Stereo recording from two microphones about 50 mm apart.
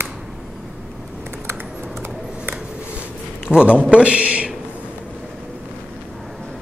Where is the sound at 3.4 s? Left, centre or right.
Centre.